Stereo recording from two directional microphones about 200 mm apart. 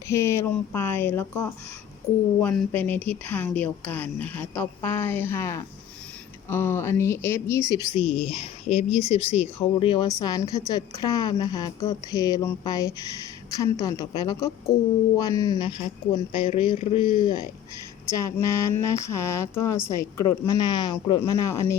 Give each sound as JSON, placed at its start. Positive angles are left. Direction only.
{"t": 0.1, "sound": "a woman's voice", "side_deg": 15}
{"t": 7.9, "sound": "a woman's voice", "side_deg": 30}